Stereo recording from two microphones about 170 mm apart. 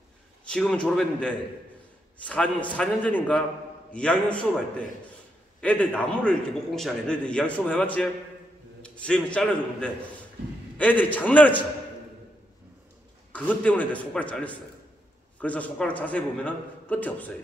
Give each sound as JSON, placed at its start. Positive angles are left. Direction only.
{"t": 0.5, "sound": "a man's voice", "side_deg": 5}
{"t": 13.3, "sound": "a man's voice", "side_deg": 10}